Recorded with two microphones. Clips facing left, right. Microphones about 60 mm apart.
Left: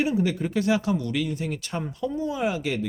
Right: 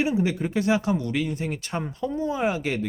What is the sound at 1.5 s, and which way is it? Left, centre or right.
Speech, right.